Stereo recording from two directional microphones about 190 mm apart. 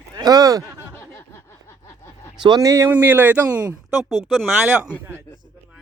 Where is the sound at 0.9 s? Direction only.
15° left (ahead or behind).